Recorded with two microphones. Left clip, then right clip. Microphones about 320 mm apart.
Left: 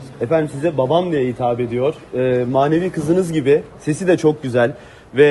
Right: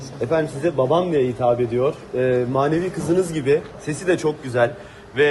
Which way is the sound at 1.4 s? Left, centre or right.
Left.